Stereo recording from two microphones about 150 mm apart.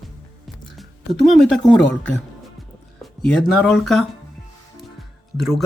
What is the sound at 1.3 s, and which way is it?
Speech, centre (ahead or behind).